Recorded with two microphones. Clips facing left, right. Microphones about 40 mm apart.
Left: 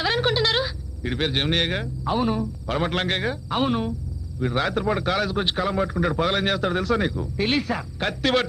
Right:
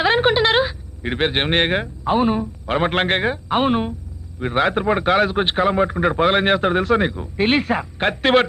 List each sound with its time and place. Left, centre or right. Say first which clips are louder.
0.0 s a man's voice: right 6 dB; right